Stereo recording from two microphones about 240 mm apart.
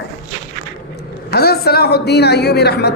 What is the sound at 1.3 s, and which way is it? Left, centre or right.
A man's voice, left.